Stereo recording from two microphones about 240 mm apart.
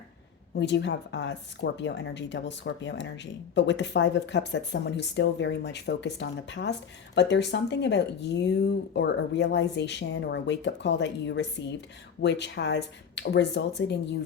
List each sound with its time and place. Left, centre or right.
0.5 s speech: left